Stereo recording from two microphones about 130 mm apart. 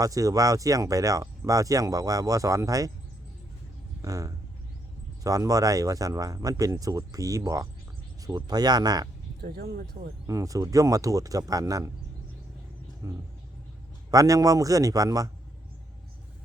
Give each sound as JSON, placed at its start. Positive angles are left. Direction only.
{"t": 0.0, "sound": "speech", "side_deg": -25}
{"t": 4.0, "sound": "speech", "side_deg": -25}
{"t": 10.2, "sound": "speech", "side_deg": -25}
{"t": 13.0, "sound": "speech", "side_deg": -20}